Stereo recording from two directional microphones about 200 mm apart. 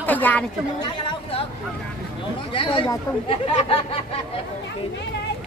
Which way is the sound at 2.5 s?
25° left (ahead or behind).